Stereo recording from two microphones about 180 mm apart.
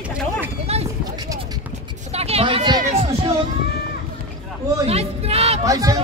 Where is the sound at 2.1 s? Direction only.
35° right (ahead or behind).